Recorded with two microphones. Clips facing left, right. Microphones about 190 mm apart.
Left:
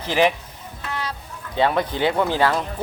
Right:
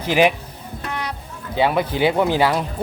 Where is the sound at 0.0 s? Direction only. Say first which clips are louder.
Right 2 dB; 15° right (ahead or behind).